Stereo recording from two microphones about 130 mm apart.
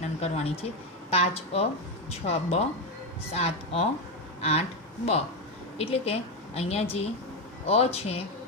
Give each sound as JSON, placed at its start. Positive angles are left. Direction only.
{"t": 0.2, "sound": "speech", "side_deg": 50}